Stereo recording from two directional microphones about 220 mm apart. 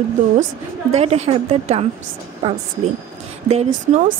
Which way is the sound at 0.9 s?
30° right (ahead or behind).